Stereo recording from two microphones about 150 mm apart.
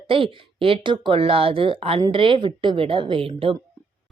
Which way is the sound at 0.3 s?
35° right (ahead or behind).